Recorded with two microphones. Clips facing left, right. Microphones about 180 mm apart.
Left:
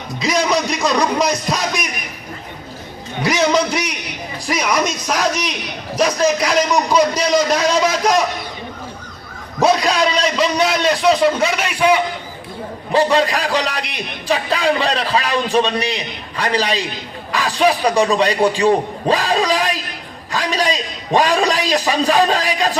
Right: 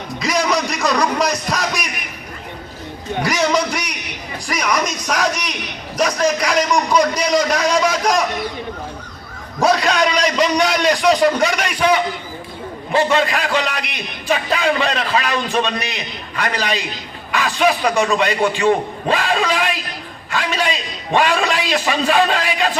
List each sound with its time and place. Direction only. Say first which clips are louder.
0.2 s a man's voice: left 1 dB; centre (ahead or behind)
3.2 s a man's voice: left 3 dB; centre (ahead or behind)
9.7 s a man's voice: even; centre (ahead or behind)
12.9 s a man's voice: left 1 dB; 35° left (ahead or behind)